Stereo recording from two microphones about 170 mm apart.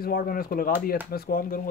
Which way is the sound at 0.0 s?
60° left (ahead or behind).